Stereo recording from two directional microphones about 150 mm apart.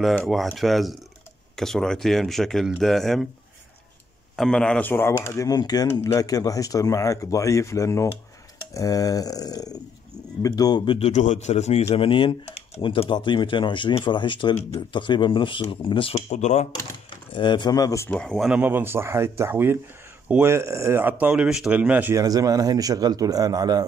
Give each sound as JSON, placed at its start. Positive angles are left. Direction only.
{"t": 0.1, "sound": "speech", "side_deg": 5}
{"t": 4.4, "sound": "speech", "side_deg": 5}
{"t": 11.0, "sound": "speech", "side_deg": 50}
{"t": 16.3, "sound": "speech", "side_deg": 50}
{"t": 17.1, "sound": "speech", "side_deg": 30}
{"t": 18.2, "sound": "speech", "side_deg": 5}
{"t": 18.5, "sound": "speech", "side_deg": -10}
{"t": 22.2, "sound": "a man's voice", "side_deg": -25}